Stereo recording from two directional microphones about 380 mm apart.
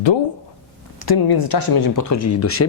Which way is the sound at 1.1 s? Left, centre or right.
Left.